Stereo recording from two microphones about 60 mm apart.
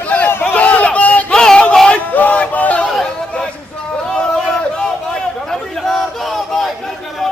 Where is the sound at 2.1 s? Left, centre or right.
Left.